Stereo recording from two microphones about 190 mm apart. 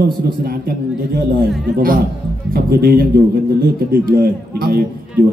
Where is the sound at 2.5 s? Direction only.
55° right (ahead or behind).